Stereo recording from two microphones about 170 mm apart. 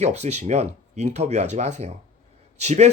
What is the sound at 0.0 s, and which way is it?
Speech, 40° right (ahead or behind).